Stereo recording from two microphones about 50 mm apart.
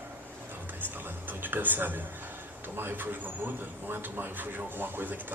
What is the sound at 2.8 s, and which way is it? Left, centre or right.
A man's voice, right.